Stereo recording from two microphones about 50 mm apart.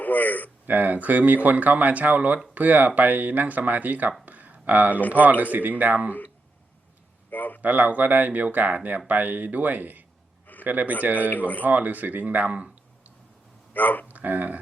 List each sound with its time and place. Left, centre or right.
0.0 s speech: left
0.7 s speech: right
4.3 s a sound: right
5.1 s speech: right
7.3 s a man's voice: left
7.6 s a man's voice: right
11.3 s speech: left
11.6 s speech: right
13.7 s speech: left
14.1 s speech: right